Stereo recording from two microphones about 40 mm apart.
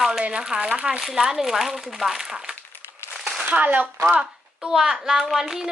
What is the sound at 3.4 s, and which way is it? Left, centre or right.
Speech, right.